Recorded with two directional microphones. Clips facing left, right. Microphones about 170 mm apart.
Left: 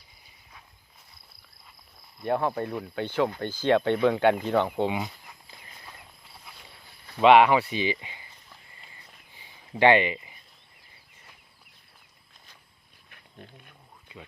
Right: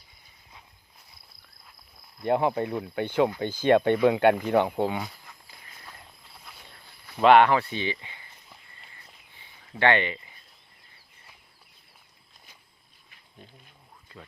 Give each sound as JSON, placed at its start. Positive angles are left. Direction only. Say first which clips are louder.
{"t": 2.2, "sound": "speech", "louder": "right 2 dB", "side_deg": -15}
{"t": 4.9, "sound": "speech", "louder": "left 1 dB", "side_deg": 5}
{"t": 6.4, "sound": "a sound", "louder": "right 1 dB", "side_deg": 5}
{"t": 9.7, "sound": "speech", "louder": "left 4 dB", "side_deg": 15}
{"t": 13.1, "sound": "dog", "louder": "left 3 dB", "side_deg": 60}